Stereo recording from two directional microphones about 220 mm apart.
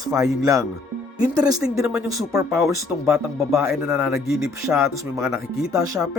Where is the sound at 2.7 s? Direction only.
Centre (ahead or behind).